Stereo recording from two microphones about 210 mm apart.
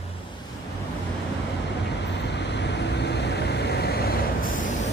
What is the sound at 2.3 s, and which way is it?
Vehicle, 55° left (ahead or behind).